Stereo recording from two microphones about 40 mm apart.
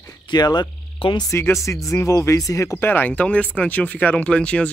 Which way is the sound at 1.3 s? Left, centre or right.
Left.